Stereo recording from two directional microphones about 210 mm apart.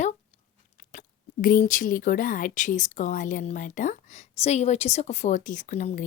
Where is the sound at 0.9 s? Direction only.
40° left (ahead or behind).